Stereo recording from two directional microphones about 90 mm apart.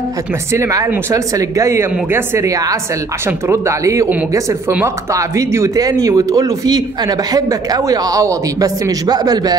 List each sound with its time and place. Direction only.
0.5 s speech: 35° right (ahead or behind)